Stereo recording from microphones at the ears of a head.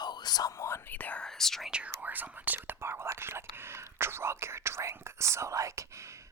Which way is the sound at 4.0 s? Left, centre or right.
Right.